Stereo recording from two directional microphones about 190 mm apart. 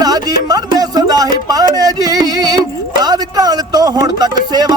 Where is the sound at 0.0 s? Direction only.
20° right (ahead or behind).